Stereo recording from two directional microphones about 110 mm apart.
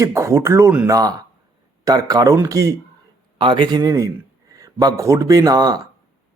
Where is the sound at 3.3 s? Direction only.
50° right (ahead or behind).